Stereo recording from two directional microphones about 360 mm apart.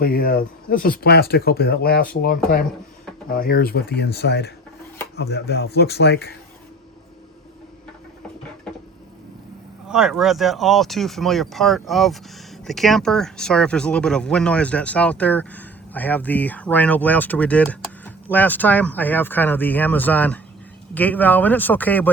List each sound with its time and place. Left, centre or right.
0.0 s speech: left
9.9 s speech: centre